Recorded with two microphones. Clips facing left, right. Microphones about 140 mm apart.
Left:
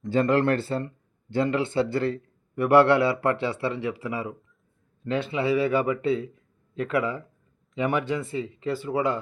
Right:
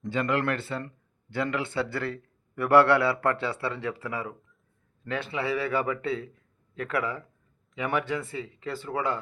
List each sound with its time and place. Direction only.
0.1 s a man's voice: 35° left (ahead or behind); by 9.1 s 15° left (ahead or behind)